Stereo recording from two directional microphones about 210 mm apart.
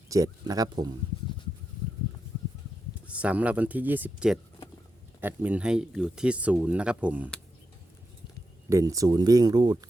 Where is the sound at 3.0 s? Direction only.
5° right (ahead or behind).